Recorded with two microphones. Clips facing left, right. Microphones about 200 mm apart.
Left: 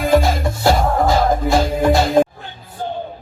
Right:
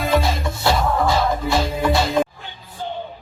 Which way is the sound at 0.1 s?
45° left (ahead or behind).